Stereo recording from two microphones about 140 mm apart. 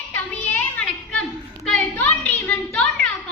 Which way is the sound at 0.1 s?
10° left (ahead or behind).